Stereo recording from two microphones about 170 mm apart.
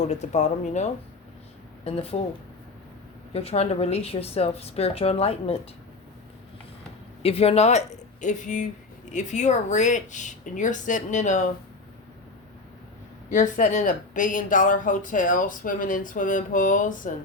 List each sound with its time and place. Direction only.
0.0 s a woman's voice: 40° left (ahead or behind)
3.3 s a woman's voice: 35° left (ahead or behind)
7.2 s a woman's voice: 35° left (ahead or behind)
13.3 s speech: 45° left (ahead or behind)